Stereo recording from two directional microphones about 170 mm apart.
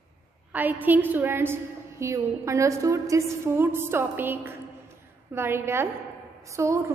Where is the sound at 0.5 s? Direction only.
10° right (ahead or behind).